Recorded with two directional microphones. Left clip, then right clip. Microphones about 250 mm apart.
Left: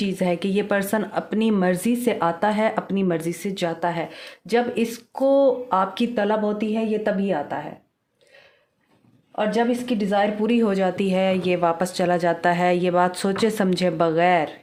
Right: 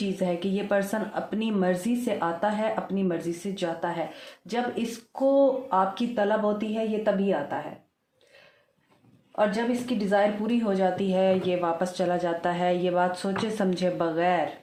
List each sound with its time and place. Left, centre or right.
0.0 s speech: left
10.1 s speech: left